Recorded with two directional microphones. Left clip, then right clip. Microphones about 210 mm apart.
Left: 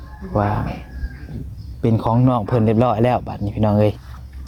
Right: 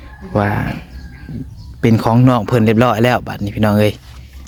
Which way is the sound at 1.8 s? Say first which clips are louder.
Right 5 dB; 30° right (ahead or behind).